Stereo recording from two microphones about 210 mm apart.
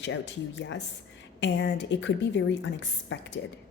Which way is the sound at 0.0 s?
60° left (ahead or behind).